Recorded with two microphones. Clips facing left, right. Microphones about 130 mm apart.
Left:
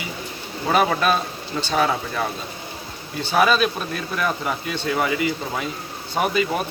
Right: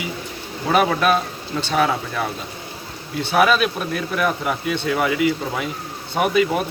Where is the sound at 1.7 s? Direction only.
Centre (ahead or behind).